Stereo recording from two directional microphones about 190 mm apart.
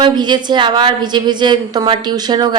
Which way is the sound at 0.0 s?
25° right (ahead or behind).